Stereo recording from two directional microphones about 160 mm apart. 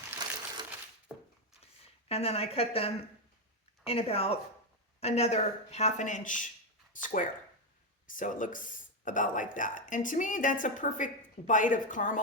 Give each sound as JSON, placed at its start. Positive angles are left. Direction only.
{"t": 2.0, "sound": "a woman's voice", "side_deg": 40}